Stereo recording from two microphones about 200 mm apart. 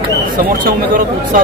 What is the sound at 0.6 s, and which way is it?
Speech, 45° right (ahead or behind).